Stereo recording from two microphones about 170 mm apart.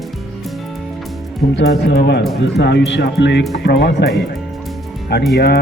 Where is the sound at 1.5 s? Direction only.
90° left.